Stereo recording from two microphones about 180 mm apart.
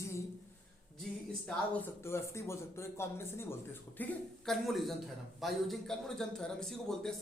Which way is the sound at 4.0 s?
Centre (ahead or behind).